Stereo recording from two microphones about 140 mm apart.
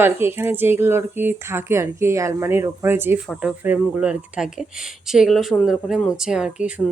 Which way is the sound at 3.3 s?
5° right (ahead or behind).